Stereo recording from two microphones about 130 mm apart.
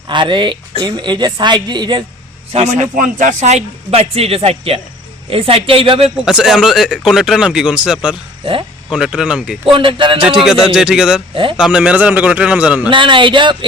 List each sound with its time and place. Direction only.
0.1 s a woman's voice: 40° right (ahead or behind)
2.5 s a man's voice: 55° right (ahead or behind)
6.2 s speech: 5° right (ahead or behind)
9.7 s a woman's voice: 40° right (ahead or behind)
10.2 s speech: 5° right (ahead or behind)
12.9 s a woman's voice: 40° right (ahead or behind)